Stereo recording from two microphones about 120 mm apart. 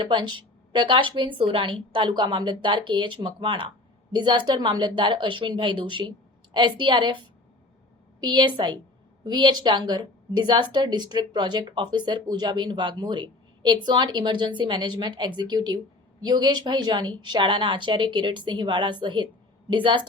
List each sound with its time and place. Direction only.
0.0 s a woman's voice: 40° right (ahead or behind)